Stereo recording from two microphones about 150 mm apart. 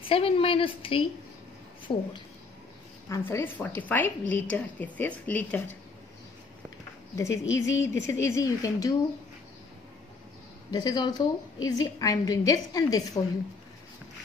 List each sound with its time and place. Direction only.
0.0 s a woman's voice: 40° left (ahead or behind)
3.1 s a woman's voice: 15° left (ahead or behind)
7.2 s a woman's voice: 20° left (ahead or behind)
10.7 s a woman's voice: 25° left (ahead or behind)